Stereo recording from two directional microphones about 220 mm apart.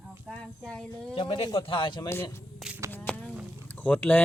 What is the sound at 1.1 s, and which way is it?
A man's voice, 20° left (ahead or behind).